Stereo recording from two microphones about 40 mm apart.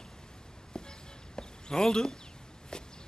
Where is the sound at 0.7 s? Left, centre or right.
Centre.